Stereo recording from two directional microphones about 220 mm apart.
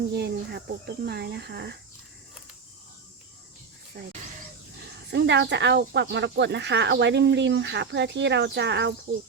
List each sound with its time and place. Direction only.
0.1 s speech: 50° right (ahead or behind)
4.0 s speech: 40° right (ahead or behind)
5.1 s speech: 55° right (ahead or behind)